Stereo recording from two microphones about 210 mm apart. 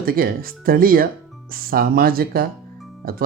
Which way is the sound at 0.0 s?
45° right (ahead or behind).